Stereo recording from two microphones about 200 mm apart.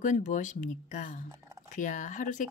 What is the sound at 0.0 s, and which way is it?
A woman's voice, 40° left (ahead or behind).